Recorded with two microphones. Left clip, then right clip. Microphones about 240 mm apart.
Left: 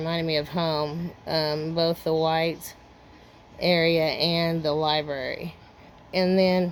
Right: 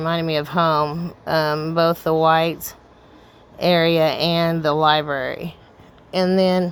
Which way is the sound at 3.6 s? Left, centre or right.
Centre.